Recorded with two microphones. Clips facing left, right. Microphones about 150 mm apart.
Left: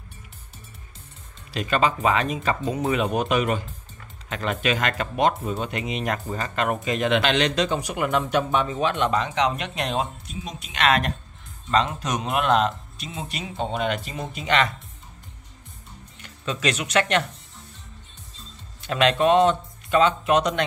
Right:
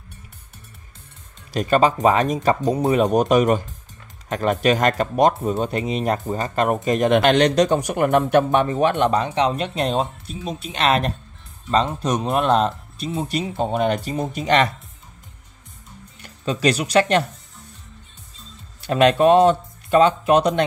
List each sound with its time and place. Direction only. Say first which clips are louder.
1.5 s speech: right 5 dB; 40° right (ahead or behind)
9.1 s speech: right 3 dB; 30° right (ahead or behind)
16.2 s speech: right 5 dB; 35° right (ahead or behind)
18.8 s speech: right 5 dB; 40° right (ahead or behind)